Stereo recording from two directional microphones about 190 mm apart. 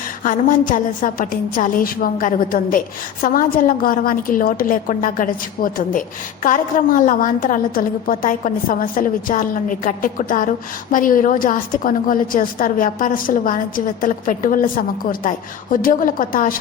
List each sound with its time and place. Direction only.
0.2 s a woman's voice: 45° left (ahead or behind)